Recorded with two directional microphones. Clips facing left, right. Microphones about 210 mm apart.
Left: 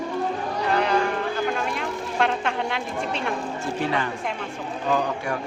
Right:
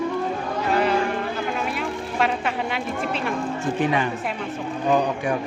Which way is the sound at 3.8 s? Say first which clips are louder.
Right 3 dB; 15° right (ahead or behind).